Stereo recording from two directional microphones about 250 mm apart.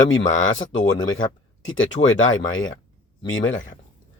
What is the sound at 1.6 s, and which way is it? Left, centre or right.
Speech, left.